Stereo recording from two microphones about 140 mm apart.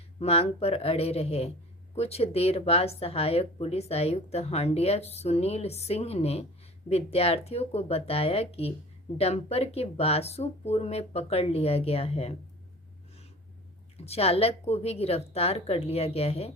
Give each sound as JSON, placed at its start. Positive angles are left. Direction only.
{"t": 0.2, "sound": "speech", "side_deg": 45}
{"t": 13.9, "sound": "speech", "side_deg": 45}